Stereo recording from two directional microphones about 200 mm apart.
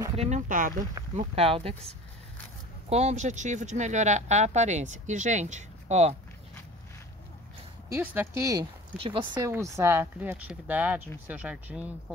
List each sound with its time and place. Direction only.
0.1 s speech: 35° right (ahead or behind)
1.1 s speech: 30° right (ahead or behind)
7.9 s speech: 10° right (ahead or behind); by 9.2 s 25° right (ahead or behind)
9.3 s speech: 15° right (ahead or behind)